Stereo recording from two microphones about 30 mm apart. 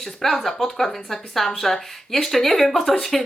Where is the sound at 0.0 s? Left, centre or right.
Centre.